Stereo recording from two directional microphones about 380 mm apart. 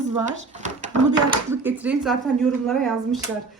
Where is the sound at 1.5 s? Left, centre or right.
Centre.